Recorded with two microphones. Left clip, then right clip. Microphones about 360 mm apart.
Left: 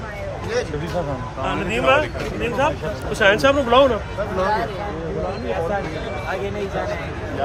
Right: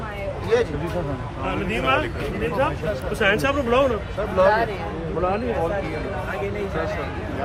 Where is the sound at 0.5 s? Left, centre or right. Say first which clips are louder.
Right 4 dB; centre.